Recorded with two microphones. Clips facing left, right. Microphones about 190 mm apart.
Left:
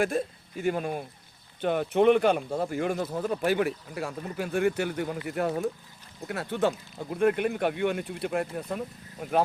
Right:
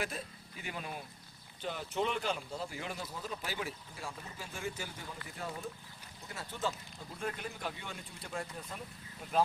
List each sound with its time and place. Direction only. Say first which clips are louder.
0.0 s speech: left 13 dB; 50° left (ahead or behind)
1.6 s speech: left 14 dB; 60° left (ahead or behind)